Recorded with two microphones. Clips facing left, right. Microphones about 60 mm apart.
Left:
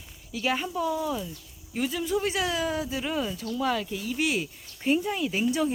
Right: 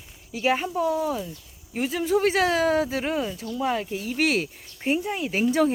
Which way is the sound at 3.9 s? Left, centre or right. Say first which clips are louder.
Right 4 dB; right.